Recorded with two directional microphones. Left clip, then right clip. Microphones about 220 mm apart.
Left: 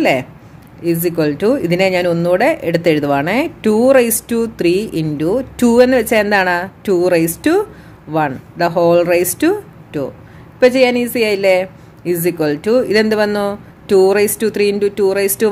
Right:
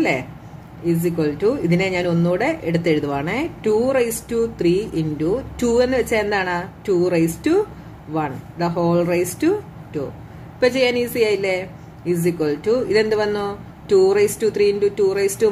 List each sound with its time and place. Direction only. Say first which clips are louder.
0.0 s speech: left 6 dB; 40° left (ahead or behind)